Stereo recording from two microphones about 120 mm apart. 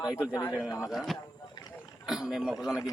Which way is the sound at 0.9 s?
Centre (ahead or behind).